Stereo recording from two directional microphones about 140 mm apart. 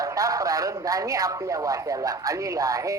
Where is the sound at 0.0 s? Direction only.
25° right (ahead or behind).